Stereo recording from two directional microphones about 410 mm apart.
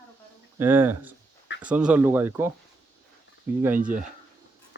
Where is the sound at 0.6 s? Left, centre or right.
Centre.